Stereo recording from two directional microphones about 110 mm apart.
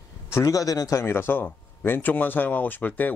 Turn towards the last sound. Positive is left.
turn(degrees=15)  # may be behind; listen again after turning